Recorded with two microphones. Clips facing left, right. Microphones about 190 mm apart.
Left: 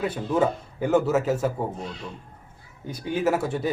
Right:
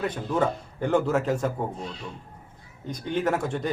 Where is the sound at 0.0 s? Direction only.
10° left (ahead or behind).